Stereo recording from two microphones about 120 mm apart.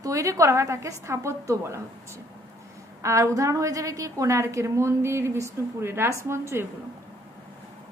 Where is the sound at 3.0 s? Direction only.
25° right (ahead or behind).